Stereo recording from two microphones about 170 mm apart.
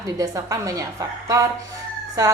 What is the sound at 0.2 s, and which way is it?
A woman's voice, 20° right (ahead or behind).